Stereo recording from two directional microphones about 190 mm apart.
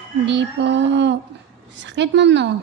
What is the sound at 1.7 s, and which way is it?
Speech, 70° right (ahead or behind).